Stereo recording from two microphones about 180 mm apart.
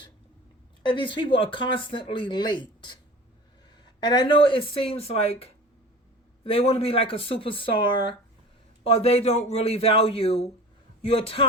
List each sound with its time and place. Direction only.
0.9 s speech: 25° left (ahead or behind)
3.8 s speech: 25° left (ahead or behind)